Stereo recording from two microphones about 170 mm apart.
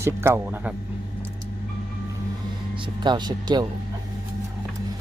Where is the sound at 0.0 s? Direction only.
15° right (ahead or behind).